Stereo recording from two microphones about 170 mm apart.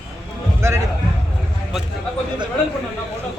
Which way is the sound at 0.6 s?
15° right (ahead or behind).